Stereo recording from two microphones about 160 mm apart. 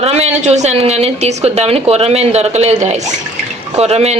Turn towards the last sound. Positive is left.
turn(degrees=-40)  # may be behind; listen again after turning